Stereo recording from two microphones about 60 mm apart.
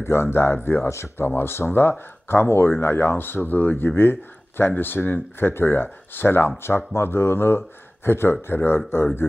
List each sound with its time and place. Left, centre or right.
0.0 s speech: left